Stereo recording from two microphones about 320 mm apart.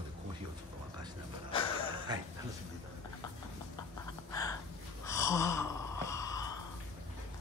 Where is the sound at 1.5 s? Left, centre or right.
Centre.